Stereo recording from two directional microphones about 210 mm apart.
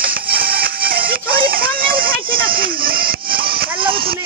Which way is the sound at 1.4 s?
45° right (ahead or behind).